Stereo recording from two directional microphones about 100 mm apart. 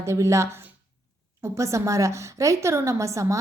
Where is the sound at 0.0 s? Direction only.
30° right (ahead or behind).